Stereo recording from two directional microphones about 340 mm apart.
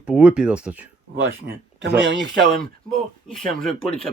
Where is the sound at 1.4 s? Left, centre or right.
Right.